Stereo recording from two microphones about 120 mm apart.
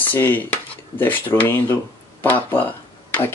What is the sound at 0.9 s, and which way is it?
Speech, 15° left (ahead or behind).